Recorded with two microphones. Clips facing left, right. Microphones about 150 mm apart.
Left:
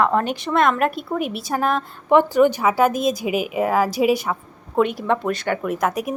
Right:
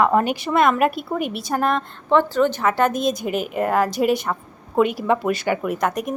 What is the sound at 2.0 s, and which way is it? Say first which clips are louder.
Speech: left 3 dB; 15° left (ahead or behind).